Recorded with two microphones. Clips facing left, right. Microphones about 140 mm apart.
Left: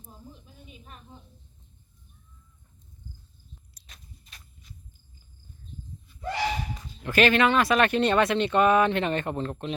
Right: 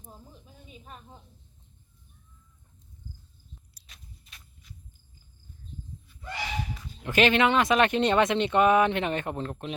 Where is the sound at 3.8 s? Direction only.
35° left (ahead or behind).